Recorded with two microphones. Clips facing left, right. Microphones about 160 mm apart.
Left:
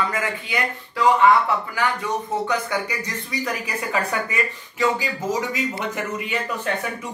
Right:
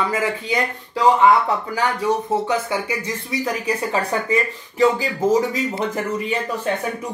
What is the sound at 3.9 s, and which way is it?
Speech, 30° right (ahead or behind).